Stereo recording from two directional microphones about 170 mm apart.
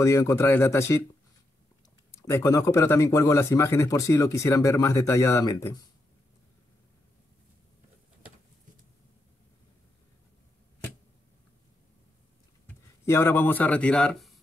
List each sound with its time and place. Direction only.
0.0 s speech: 15° left (ahead or behind)
2.0 s speech: 15° left (ahead or behind)
12.6 s speech: 15° left (ahead or behind)